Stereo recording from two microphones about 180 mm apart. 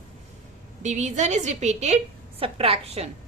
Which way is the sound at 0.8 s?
40° right (ahead or behind).